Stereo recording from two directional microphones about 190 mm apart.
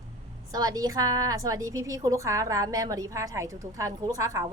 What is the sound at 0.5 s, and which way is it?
A woman's voice, 20° right (ahead or behind).